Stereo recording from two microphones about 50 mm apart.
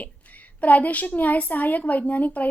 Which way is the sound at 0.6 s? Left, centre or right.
Left.